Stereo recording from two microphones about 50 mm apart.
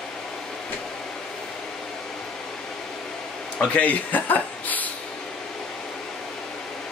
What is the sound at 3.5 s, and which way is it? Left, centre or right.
Speech, left.